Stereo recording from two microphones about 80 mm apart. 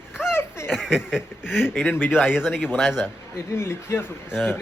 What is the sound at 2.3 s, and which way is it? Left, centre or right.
Speech, centre.